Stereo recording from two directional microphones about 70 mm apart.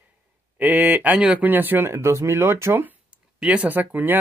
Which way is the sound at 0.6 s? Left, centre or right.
Right.